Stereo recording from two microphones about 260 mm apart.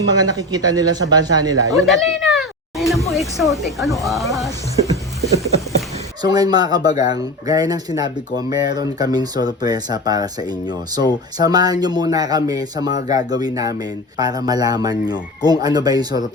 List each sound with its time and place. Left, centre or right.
0.1 s speech: centre
1.9 s a sound: centre
3.1 s speech: centre
6.2 s speech: centre